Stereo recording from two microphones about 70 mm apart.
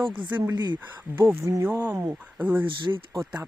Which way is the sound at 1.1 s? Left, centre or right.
Right.